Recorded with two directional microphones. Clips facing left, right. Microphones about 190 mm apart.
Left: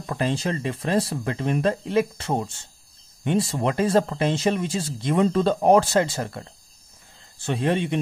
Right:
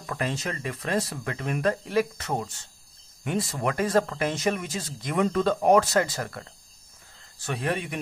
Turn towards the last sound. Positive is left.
turn(degrees=25)  # may be behind; listen again after turning